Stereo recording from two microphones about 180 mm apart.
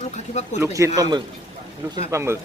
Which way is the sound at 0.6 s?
20° right (ahead or behind).